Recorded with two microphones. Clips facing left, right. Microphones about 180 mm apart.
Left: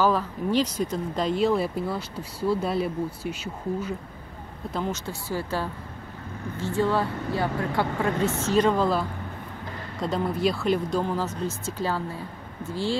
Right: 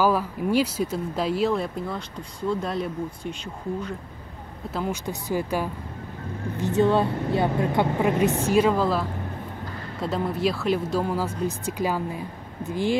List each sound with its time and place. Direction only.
0.0 s speech: 10° right (ahead or behind)
4.6 s speech: 5° right (ahead or behind)
5.0 s speech: 15° right (ahead or behind)
10.0 s speech: centre (ahead or behind)